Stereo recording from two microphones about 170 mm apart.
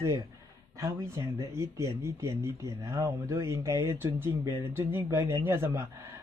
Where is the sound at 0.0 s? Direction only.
20° right (ahead or behind).